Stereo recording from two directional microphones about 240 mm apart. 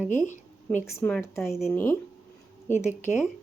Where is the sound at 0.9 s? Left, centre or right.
Centre.